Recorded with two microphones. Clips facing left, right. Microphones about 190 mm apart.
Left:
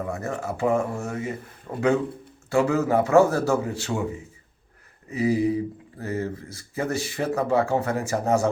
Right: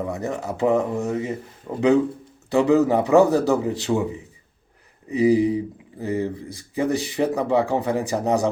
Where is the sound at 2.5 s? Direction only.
20° right (ahead or behind).